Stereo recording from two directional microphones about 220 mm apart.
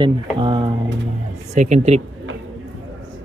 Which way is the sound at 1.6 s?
30° right (ahead or behind).